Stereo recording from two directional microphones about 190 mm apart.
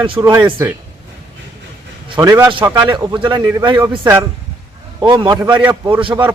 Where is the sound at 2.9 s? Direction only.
25° right (ahead or behind).